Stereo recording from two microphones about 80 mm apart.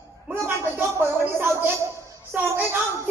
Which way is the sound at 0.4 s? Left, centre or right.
Right.